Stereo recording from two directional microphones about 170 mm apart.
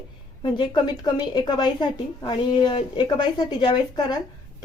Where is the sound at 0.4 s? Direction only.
25° left (ahead or behind).